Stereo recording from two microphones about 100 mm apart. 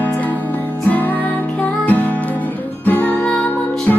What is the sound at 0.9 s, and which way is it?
Music, 15° left (ahead or behind).